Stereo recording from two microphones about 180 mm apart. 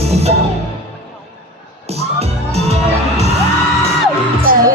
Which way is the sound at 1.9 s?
35° right (ahead or behind).